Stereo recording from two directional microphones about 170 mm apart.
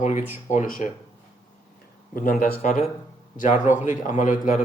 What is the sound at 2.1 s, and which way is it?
Speech, 55° left (ahead or behind).